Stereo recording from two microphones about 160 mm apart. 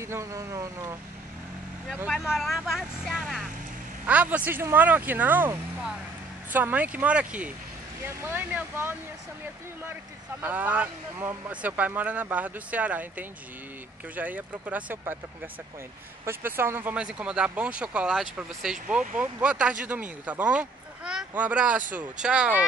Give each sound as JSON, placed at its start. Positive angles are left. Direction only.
{"t": 0.0, "sound": "speech", "side_deg": -20}
{"t": 2.0, "sound": "a man's voice", "side_deg": 0}
{"t": 10.4, "sound": "speech", "side_deg": -10}
{"t": 16.3, "sound": "speech", "side_deg": -15}